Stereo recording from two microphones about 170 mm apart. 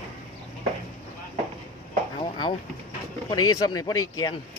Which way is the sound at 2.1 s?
25° left (ahead or behind).